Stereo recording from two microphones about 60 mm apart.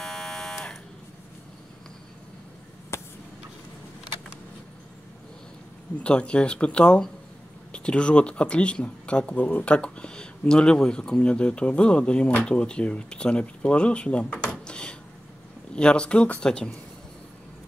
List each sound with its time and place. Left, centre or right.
0.0 s alarm: centre
2.9 s vehicle: left
5.9 s speech: centre